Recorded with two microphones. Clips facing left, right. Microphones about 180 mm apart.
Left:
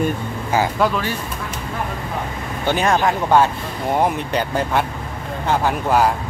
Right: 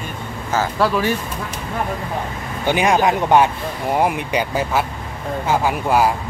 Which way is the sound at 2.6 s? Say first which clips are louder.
Right 2 dB; 15° right (ahead or behind).